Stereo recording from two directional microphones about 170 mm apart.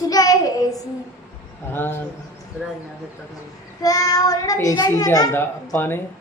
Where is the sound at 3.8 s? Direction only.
20° left (ahead or behind).